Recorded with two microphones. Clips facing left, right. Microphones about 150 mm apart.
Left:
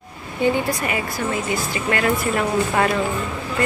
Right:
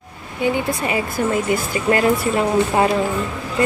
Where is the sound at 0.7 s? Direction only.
30° right (ahead or behind).